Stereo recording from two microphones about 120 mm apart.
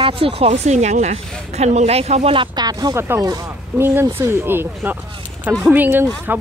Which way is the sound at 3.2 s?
30° right (ahead or behind).